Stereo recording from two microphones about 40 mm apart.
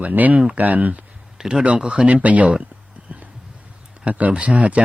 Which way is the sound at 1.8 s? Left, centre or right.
Right.